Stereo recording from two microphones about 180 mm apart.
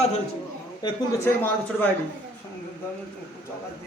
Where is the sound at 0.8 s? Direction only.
10° left (ahead or behind).